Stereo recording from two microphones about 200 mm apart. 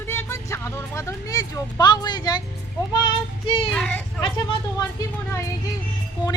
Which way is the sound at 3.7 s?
5° left (ahead or behind).